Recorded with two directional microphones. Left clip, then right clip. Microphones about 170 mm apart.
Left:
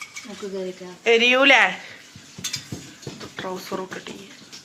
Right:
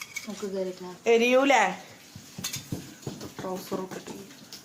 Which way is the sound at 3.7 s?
25° left (ahead or behind).